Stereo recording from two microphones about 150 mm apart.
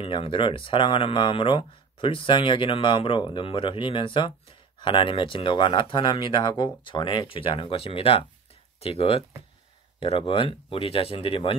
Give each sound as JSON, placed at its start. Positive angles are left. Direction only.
{"t": 0.0, "sound": "speech", "side_deg": 35}